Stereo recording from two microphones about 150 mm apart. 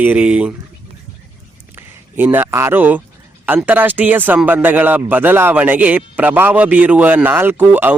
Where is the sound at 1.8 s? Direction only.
15° right (ahead or behind).